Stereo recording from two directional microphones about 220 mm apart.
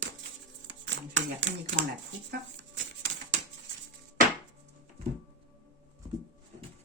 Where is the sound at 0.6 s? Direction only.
55° right (ahead or behind).